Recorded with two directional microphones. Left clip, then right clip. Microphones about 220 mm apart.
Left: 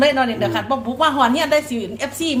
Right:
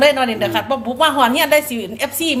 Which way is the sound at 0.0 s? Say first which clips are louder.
Right 2 dB; 25° right (ahead or behind).